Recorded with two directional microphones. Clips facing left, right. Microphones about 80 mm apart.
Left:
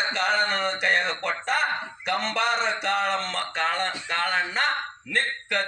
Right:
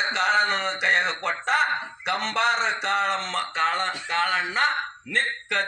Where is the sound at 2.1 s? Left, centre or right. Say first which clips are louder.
Right 1 dB; right.